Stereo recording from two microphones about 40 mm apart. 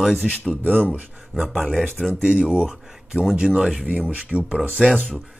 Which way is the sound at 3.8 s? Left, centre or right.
Right.